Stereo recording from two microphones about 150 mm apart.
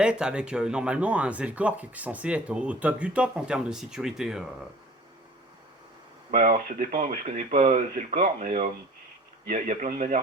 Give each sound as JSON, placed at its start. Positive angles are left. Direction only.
{"t": 0.0, "sound": "speech", "side_deg": -5}
{"t": 6.3, "sound": "speech", "side_deg": -65}